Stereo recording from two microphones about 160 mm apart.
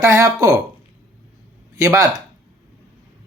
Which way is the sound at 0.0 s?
20° right (ahead or behind).